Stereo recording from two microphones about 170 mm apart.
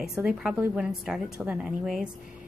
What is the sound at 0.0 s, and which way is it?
A woman's voice, 5° right (ahead or behind).